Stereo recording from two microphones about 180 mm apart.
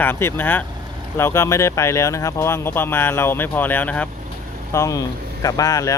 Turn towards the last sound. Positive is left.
turn(degrees=20)  # may be behind; listen again after turning